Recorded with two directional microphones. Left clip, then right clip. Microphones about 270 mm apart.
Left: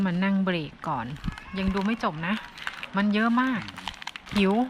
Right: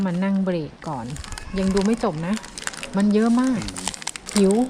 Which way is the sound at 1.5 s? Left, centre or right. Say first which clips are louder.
Right 7 dB; centre.